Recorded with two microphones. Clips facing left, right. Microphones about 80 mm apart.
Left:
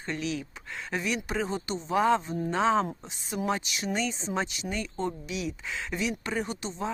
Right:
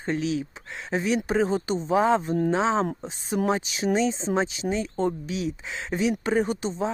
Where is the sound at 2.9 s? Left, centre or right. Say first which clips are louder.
Right 7 dB; right.